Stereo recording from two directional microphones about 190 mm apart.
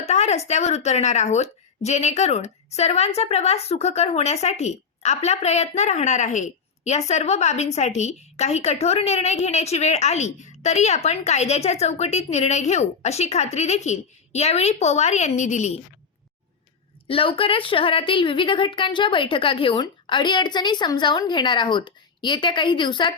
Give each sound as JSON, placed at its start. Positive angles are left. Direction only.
{"t": 0.0, "sound": "speech", "side_deg": 35}
{"t": 17.1, "sound": "a woman's voice", "side_deg": 30}